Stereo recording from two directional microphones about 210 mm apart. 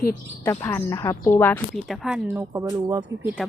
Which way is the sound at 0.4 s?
10° left (ahead or behind).